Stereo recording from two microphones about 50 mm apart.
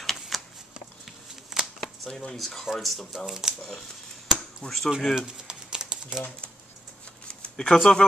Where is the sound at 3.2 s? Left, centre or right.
Centre.